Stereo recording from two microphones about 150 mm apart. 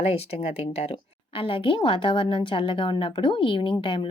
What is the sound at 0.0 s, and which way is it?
A woman's voice, 40° left (ahead or behind).